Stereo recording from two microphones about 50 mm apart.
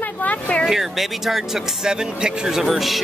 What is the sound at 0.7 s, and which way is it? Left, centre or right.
Speech, centre.